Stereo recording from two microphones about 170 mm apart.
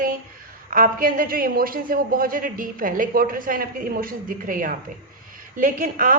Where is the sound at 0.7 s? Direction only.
55° right (ahead or behind).